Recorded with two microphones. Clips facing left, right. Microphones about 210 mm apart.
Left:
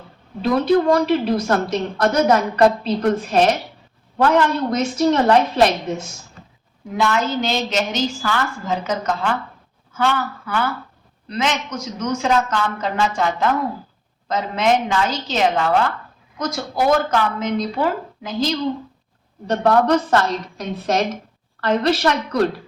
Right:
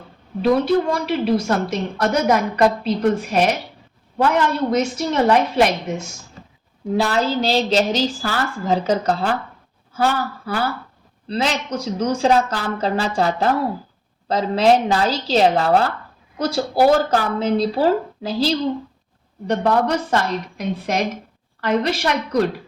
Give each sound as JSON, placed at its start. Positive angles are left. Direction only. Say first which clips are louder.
{"t": 0.9, "sound": "a woman's voice", "louder": "left 2 dB", "side_deg": -10}
{"t": 6.9, "sound": "a woman's voice", "louder": "right 1 dB", "side_deg": -35}
{"t": 19.5, "sound": "a woman's voice", "louder": "left 2 dB", "side_deg": -10}